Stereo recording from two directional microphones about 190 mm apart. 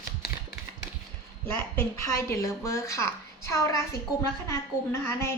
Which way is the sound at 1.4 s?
15° left (ahead or behind).